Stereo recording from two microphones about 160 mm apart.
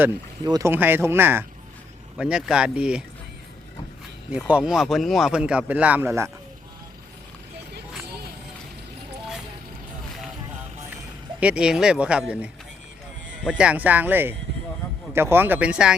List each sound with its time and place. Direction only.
0.4 s speech: 25° right (ahead or behind)
0.7 s speech: 10° right (ahead or behind)
4.3 s speech: 10° right (ahead or behind)
11.3 s speech: 5° right (ahead or behind)